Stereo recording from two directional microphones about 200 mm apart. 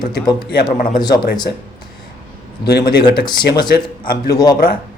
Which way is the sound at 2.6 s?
55° left (ahead or behind).